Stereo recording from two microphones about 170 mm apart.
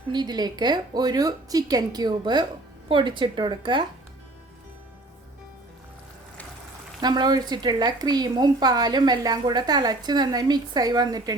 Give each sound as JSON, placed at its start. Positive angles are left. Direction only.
{"t": 0.1, "sound": "speech", "side_deg": -25}
{"t": 7.0, "sound": "speech", "side_deg": -25}